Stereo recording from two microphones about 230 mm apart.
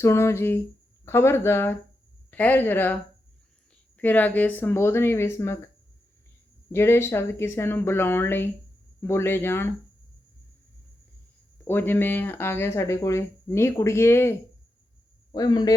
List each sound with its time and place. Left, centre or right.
0.0 s speech: centre
6.7 s speech: centre
11.6 s speech: centre